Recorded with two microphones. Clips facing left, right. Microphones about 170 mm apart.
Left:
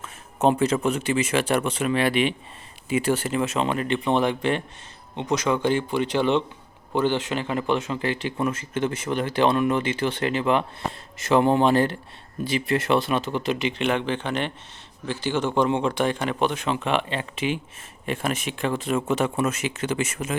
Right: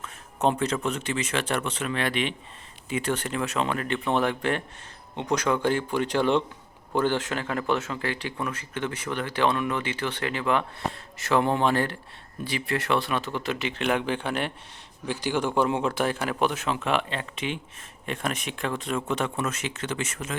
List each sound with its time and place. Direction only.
0.4 s speech: 5° left (ahead or behind)
3.4 s speech: 25° left (ahead or behind)
5.2 s speech: 5° left (ahead or behind)
13.8 s speech: 10° right (ahead or behind); by 20.3 s 10° left (ahead or behind)